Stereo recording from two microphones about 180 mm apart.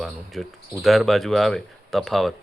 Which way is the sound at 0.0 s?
Centre (ahead or behind).